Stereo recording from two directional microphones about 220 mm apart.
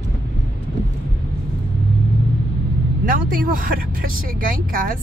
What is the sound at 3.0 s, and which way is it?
Speech, 40° right (ahead or behind).